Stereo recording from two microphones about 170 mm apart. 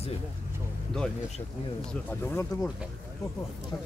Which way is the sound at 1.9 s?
10° left (ahead or behind).